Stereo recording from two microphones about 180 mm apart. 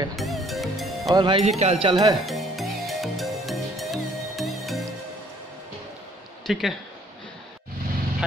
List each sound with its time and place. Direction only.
0.1 s music: centre (ahead or behind)
1.1 s speech: 30° right (ahead or behind)
2.2 s music: centre (ahead or behind)
6.4 s speech: centre (ahead or behind)